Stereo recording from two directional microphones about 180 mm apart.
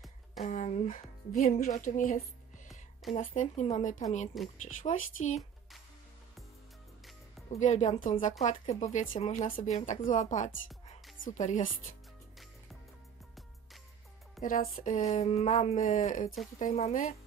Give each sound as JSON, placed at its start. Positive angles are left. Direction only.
{"t": 0.0, "sound": "a sound", "side_deg": 0}
{"t": 0.5, "sound": "speech", "side_deg": 40}
{"t": 2.7, "sound": "music", "side_deg": 0}
{"t": 3.3, "sound": "speech", "side_deg": 40}
{"t": 4.3, "sound": "speech", "side_deg": 0}
{"t": 4.8, "sound": "speech", "side_deg": 35}
{"t": 7.6, "sound": "speech", "side_deg": 40}
{"t": 14.4, "sound": "speech", "side_deg": 50}